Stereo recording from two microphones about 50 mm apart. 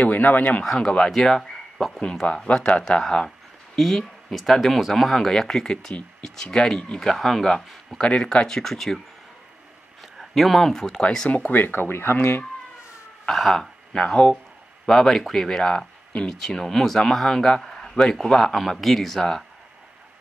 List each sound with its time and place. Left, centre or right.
0.0 s speech: left
0.7 s a man's voice: centre
8.0 s a man's voice: centre
10.1 s speech: centre
11.0 s a man's voice: centre
11.2 s speech: left
11.6 s speech: left
13.2 s a man's voice: centre
16.3 s a man's voice: centre